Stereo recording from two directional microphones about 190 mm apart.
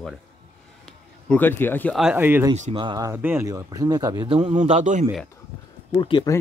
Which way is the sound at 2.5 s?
35° right (ahead or behind).